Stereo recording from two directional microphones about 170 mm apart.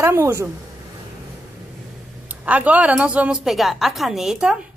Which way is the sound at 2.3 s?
10° right (ahead or behind).